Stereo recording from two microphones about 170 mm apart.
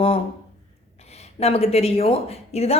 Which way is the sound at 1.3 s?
35° left (ahead or behind).